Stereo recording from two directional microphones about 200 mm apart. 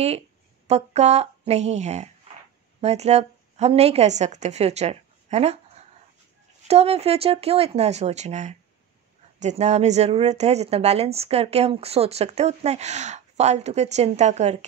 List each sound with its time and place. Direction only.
0.7 s a woman's voice: 35° right (ahead or behind)